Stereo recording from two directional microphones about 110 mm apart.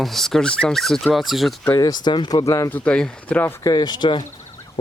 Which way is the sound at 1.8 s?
40° left (ahead or behind).